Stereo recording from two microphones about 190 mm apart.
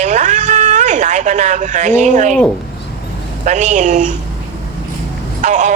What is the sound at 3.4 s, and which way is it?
Speech, 40° right (ahead or behind).